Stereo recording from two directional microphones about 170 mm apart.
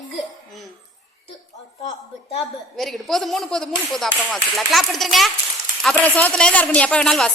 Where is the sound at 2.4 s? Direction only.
Centre (ahead or behind).